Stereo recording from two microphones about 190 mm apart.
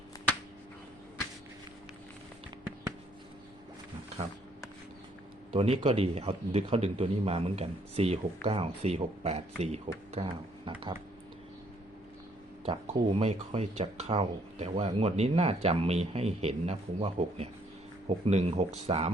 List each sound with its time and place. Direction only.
5.5 s speech: 30° right (ahead or behind)
12.6 s speech: 30° right (ahead or behind)